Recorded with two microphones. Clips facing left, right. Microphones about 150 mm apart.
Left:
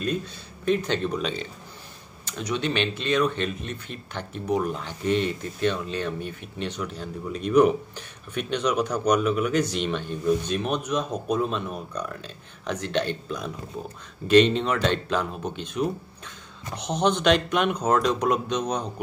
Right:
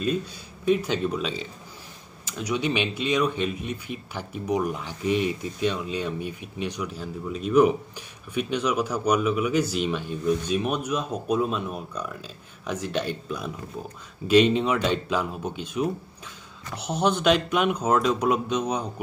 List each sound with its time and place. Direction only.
0.7 s speech: 5° right (ahead or behind)